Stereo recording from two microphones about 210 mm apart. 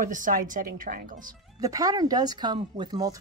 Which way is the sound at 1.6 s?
15° right (ahead or behind).